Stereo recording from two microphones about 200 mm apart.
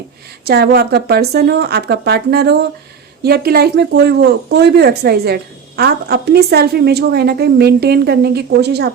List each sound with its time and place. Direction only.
0.4 s speech: 55° right (ahead or behind)